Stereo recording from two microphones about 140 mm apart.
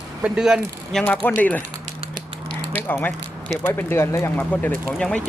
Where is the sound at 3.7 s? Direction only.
15° left (ahead or behind).